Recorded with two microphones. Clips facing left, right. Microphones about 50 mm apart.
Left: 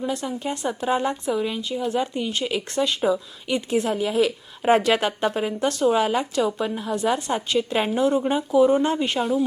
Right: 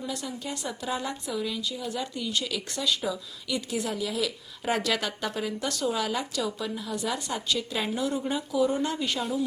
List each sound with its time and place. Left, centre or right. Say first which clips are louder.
0.0 s speech: left 8 dB; left